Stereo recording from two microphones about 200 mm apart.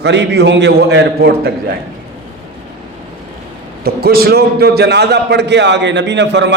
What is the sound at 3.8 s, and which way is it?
A man's voice, 50° right (ahead or behind).